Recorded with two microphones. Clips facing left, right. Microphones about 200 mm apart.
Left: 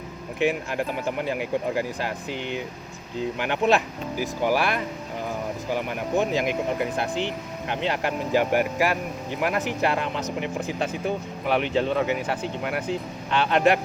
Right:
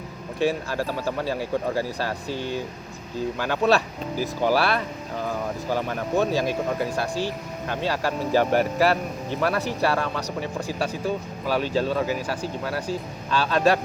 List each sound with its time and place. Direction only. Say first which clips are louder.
0.3 s speech: even; 20° left (ahead or behind)